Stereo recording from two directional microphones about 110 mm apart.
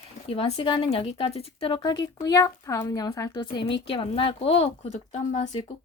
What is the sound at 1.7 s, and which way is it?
Speech, 40° left (ahead or behind).